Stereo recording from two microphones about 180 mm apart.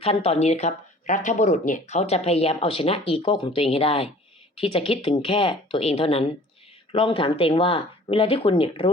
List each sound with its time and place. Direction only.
0.0 s speech: 35° left (ahead or behind)